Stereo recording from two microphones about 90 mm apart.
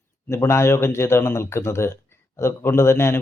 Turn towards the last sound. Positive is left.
turn(degrees=30)  # may be behind; listen again after turning